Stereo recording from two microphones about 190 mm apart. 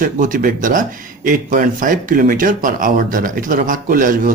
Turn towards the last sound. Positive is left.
turn(degrees=-45)  # may be behind; listen again after turning